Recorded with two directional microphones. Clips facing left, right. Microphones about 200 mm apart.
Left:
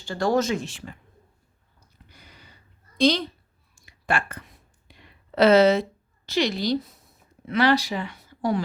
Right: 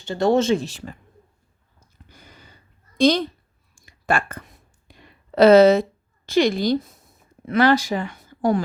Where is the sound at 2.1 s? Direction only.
45° right (ahead or behind).